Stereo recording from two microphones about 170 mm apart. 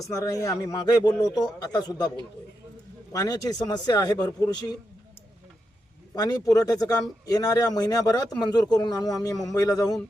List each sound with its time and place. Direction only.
0.0 s a man's voice: 20° left (ahead or behind)
3.1 s a man's voice: 20° left (ahead or behind)
6.1 s a man's voice: 20° left (ahead or behind)